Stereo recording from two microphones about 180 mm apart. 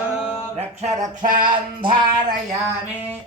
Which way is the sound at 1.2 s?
25° right (ahead or behind).